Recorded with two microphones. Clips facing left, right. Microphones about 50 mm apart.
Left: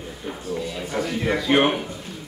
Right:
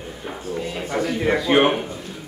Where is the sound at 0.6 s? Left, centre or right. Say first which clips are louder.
Right 2 dB; right.